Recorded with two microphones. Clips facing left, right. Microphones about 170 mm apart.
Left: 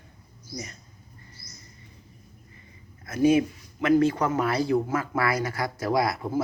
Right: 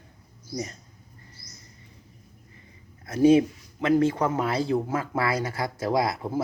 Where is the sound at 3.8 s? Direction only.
20° right (ahead or behind).